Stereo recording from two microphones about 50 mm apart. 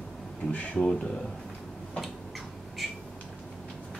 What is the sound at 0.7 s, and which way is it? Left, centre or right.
Speech, centre.